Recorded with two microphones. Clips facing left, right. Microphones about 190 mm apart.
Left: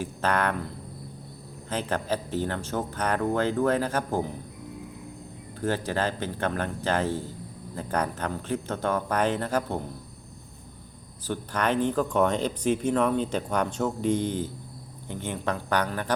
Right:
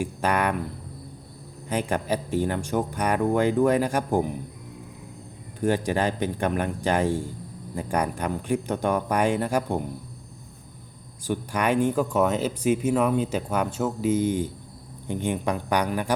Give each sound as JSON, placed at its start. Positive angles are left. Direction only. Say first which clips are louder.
{"t": 0.0, "sound": "speech", "louder": "right 2 dB", "side_deg": -10}
{"t": 1.7, "sound": "speech", "louder": "right 3 dB", "side_deg": -15}
{"t": 5.5, "sound": "speech", "louder": "right 4 dB", "side_deg": -15}
{"t": 11.3, "sound": "speech", "louder": "right 3 dB", "side_deg": -10}